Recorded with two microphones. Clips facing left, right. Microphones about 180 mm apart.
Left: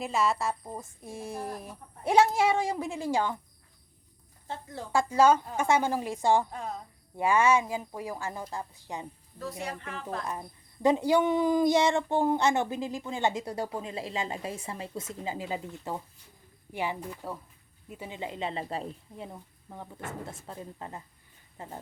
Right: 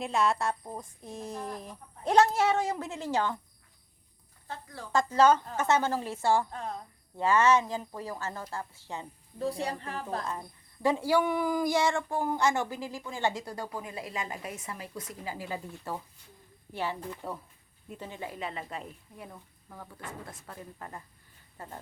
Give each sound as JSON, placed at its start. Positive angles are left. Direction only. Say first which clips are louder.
{"t": 0.0, "sound": "a woman's voice", "louder": "even", "side_deg": 0}
{"t": 4.4, "sound": "a woman's voice", "louder": "left 4 dB", "side_deg": 25}
{"t": 4.9, "sound": "a woman's voice", "louder": "left 1 dB", "side_deg": 10}
{"t": 9.4, "sound": "speech", "louder": "right 4 dB", "side_deg": -30}
{"t": 10.8, "sound": "a woman's voice", "louder": "left 3 dB", "side_deg": 20}
{"t": 18.1, "sound": "speech", "louder": "left 4 dB", "side_deg": 20}